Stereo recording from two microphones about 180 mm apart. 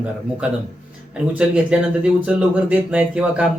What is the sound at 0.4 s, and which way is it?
A man's voice, 5° right (ahead or behind).